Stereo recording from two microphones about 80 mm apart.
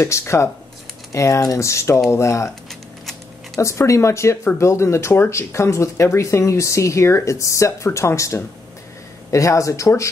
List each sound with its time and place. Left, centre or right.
0.0 s speech: left
2.7 s a sound: centre
3.6 s speech: left